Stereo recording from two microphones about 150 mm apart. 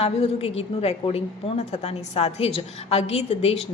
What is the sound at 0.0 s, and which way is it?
A woman's voice, 40° left (ahead or behind).